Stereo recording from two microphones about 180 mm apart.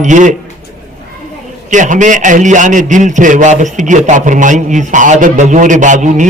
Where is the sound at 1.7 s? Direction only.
45° right (ahead or behind).